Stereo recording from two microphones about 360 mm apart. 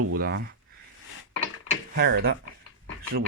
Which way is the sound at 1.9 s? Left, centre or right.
Right.